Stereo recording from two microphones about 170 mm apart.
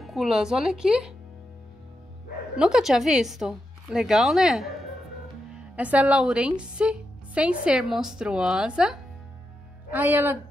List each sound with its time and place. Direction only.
0.0 s speech: centre (ahead or behind)
2.5 s speech: 5° right (ahead or behind)
5.8 s a woman's voice: 10° right (ahead or behind)